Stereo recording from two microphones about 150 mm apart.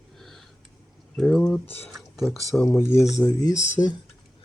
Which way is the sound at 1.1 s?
5° left (ahead or behind).